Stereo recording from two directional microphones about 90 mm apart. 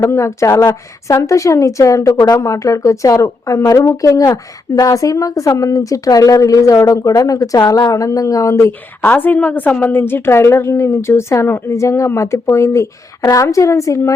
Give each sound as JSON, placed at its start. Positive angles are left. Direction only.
{"t": 0.0, "sound": "speech", "side_deg": 30}
{"t": 0.6, "sound": "speech", "side_deg": 45}
{"t": 9.0, "sound": "a woman's voice", "side_deg": 20}